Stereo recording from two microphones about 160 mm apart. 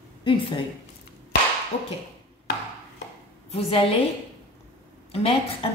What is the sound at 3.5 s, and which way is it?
Speech, 35° left (ahead or behind).